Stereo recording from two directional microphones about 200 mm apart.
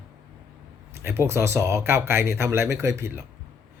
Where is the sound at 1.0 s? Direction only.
10° right (ahead or behind).